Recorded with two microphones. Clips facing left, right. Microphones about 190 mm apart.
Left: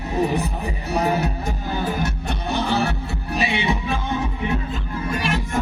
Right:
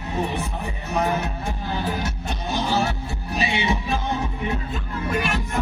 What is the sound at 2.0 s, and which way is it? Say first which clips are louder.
Music: left 3 dB; 60° left (ahead or behind).